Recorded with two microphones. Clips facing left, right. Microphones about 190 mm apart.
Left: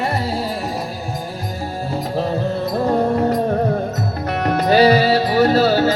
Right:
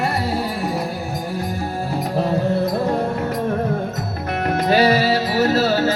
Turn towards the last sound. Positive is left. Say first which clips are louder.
# left 3 dB
turn(degrees=30)  # may be behind; listen again after turning